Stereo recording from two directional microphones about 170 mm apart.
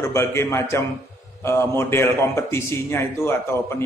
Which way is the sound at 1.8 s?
15° left (ahead or behind).